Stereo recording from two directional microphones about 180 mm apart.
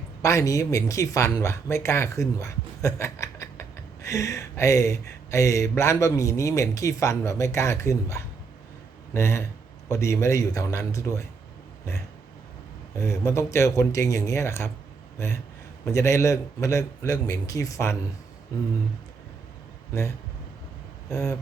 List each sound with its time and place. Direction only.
0.2 s speech: 15° left (ahead or behind)
13.0 s speech: 15° left (ahead or behind)
15.9 s speech: 15° left (ahead or behind)
19.9 s speech: 15° left (ahead or behind)